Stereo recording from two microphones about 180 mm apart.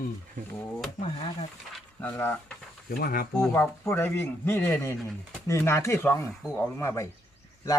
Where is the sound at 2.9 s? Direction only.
55° left (ahead or behind).